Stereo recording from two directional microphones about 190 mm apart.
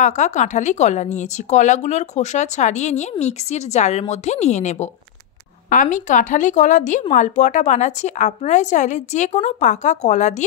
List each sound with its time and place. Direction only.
0.0 s speech: 40° left (ahead or behind)